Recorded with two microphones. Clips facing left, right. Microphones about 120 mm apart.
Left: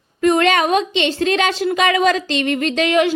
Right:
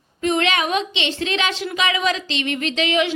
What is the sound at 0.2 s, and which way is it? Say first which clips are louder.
A woman's voice: left 6 dB; 45° left (ahead or behind).